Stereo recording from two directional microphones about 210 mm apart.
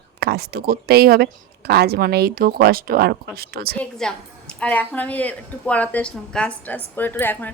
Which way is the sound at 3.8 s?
5° left (ahead or behind).